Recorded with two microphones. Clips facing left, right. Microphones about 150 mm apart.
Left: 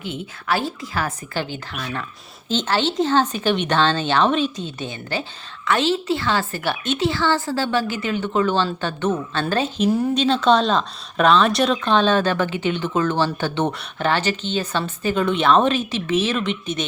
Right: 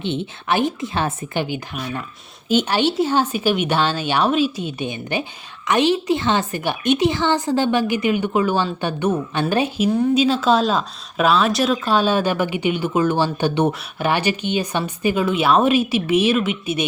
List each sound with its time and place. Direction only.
0.0 s a woman's voice: 25° right (ahead or behind); by 16.8 s 10° right (ahead or behind)